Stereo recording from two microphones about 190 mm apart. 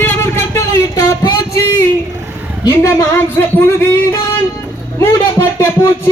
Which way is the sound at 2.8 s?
15° left (ahead or behind).